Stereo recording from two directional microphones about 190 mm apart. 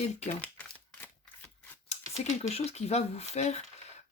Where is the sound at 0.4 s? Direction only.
10° left (ahead or behind).